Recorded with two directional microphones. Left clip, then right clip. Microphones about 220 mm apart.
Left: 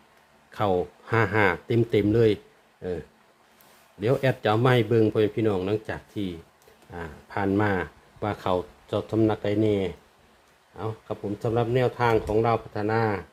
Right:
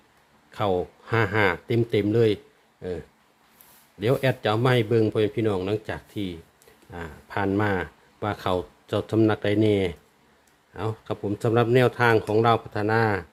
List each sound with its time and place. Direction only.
0.5 s speech: centre (ahead or behind)
4.0 s speech: centre (ahead or behind)